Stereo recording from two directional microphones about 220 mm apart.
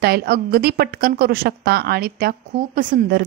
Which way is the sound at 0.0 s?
45° right (ahead or behind).